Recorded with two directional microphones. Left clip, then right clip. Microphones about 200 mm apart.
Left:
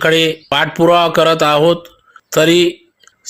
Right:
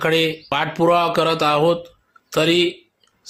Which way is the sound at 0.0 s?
15° left (ahead or behind).